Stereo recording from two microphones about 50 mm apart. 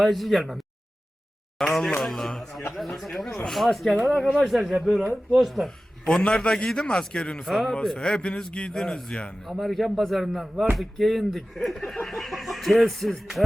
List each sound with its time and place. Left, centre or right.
0.0 s speech: centre
5.6 s a man's voice: centre
7.4 s speech: centre
7.9 s a man's voice: left
9.4 s speech: centre